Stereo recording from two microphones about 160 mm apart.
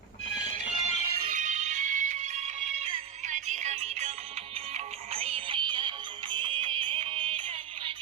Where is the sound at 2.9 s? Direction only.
50° right (ahead or behind).